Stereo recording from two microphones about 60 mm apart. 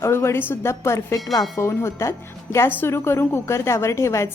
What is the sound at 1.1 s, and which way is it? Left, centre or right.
Speech, left.